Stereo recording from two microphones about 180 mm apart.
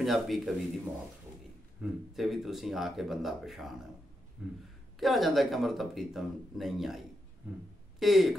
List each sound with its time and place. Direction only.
0.0 s a man's voice: centre (ahead or behind)
1.8 s a man's voice: centre (ahead or behind)